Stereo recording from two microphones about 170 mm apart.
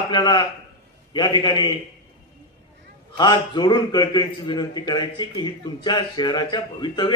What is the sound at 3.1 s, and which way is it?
A man's voice, 25° left (ahead or behind).